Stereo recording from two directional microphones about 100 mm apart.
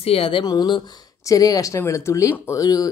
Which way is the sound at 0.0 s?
75° left (ahead or behind).